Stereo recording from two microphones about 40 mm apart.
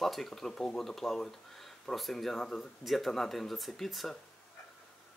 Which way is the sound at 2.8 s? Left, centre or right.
Centre.